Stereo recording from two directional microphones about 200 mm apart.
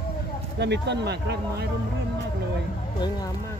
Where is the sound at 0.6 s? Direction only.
60° right (ahead or behind).